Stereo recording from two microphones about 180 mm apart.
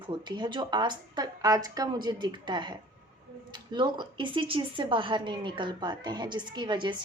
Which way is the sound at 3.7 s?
25° right (ahead or behind).